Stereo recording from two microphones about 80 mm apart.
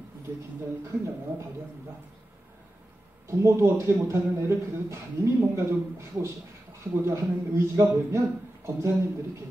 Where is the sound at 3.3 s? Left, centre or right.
Right.